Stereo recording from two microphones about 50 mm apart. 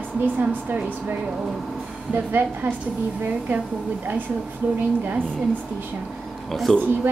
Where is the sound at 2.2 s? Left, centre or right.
Right.